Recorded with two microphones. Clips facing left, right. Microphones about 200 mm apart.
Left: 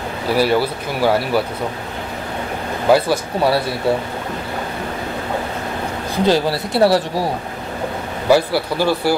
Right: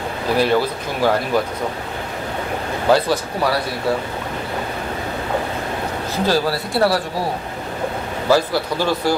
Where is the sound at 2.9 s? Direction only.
10° left (ahead or behind).